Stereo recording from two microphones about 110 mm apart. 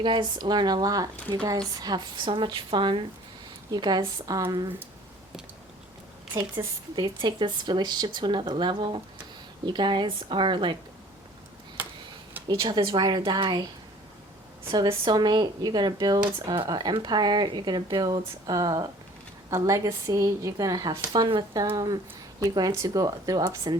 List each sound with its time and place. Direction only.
0.0 s speech: 45° right (ahead or behind)
6.6 s speech: 30° right (ahead or behind)
6.9 s speech: 45° right (ahead or behind)
11.8 s a sound: 15° right (ahead or behind)
12.5 s speech: 40° right (ahead or behind)
14.7 s speech: 45° right (ahead or behind)